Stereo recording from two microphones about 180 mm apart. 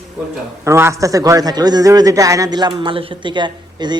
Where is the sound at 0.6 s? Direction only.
15° right (ahead or behind).